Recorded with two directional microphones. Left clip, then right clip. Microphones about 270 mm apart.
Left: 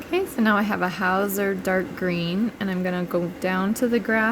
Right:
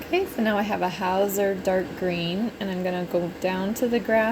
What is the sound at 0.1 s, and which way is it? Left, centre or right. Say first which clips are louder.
Speech: left 2 dB; left.